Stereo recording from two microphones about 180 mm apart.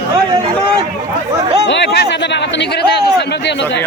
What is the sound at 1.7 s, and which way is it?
Speech, 75° left (ahead or behind).